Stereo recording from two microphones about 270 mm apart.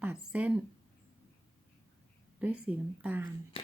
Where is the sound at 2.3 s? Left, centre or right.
Centre.